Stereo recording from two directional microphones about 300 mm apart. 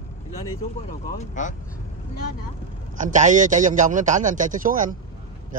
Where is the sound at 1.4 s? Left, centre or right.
Left.